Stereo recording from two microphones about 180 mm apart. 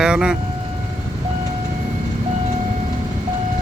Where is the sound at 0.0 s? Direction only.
5° right (ahead or behind).